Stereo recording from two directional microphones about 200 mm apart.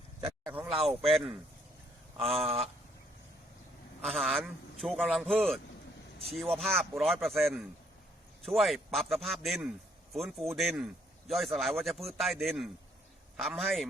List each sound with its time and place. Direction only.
0.2 s a sound: 10° right (ahead or behind)
0.9 s a man's voice: centre (ahead or behind)
2.4 s speech: 30° right (ahead or behind)
4.0 s a man's voice: centre (ahead or behind)
6.6 s a man's voice: centre (ahead or behind)